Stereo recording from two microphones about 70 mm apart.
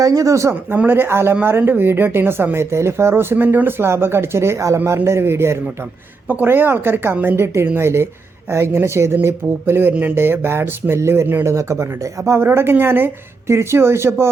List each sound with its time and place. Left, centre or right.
0.0 s speech: right
0.9 s speech: right
11.4 s speech: right